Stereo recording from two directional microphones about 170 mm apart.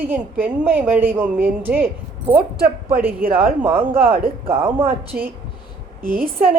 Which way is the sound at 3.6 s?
10° right (ahead or behind).